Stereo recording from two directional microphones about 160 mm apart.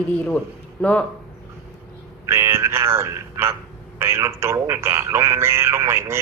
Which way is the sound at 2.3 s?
15° right (ahead or behind).